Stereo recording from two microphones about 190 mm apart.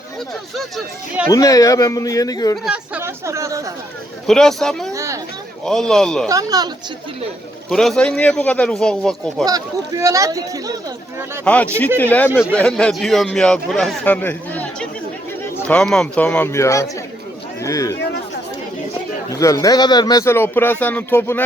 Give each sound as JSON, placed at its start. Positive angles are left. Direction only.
{"t": 1.3, "sound": "speech", "side_deg": 20}
{"t": 2.6, "sound": "speech", "side_deg": -5}
{"t": 4.3, "sound": "a man's voice", "side_deg": 5}
{"t": 4.9, "sound": "a sound", "side_deg": -15}
{"t": 5.6, "sound": "a man's voice", "side_deg": 5}
{"t": 6.2, "sound": "speech", "side_deg": -20}
{"t": 7.7, "sound": "a man's voice", "side_deg": 0}
{"t": 9.4, "sound": "speech", "side_deg": -20}
{"t": 11.4, "sound": "a man's voice", "side_deg": 5}
{"t": 17.9, "sound": "speech", "side_deg": 65}
{"t": 19.3, "sound": "speech", "side_deg": 15}